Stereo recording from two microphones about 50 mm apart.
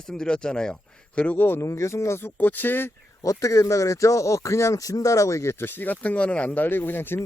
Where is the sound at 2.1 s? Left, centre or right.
Left.